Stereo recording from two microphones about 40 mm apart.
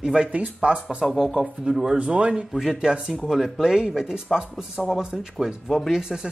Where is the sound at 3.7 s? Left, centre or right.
Centre.